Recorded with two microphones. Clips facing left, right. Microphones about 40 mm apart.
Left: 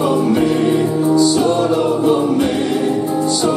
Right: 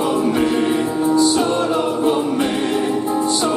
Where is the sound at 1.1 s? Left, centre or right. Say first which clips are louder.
Left 2 dB; centre.